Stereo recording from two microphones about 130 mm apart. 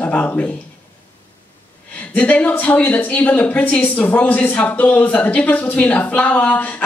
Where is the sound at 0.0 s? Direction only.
10° left (ahead or behind).